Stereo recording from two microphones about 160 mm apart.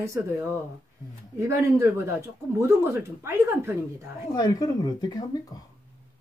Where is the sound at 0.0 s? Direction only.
20° right (ahead or behind).